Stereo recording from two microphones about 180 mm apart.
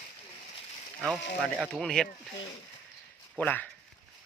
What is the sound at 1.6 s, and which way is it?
Speech, 5° left (ahead or behind).